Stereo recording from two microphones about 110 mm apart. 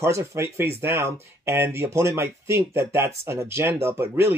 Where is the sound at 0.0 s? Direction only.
25° right (ahead or behind).